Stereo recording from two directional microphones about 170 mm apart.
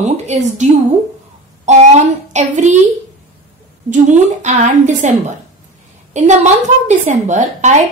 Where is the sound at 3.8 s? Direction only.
45° right (ahead or behind).